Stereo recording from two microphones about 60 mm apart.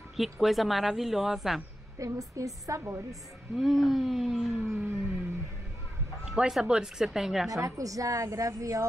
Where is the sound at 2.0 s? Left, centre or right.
Right.